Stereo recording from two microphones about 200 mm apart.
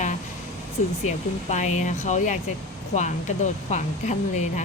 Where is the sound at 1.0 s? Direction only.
35° left (ahead or behind).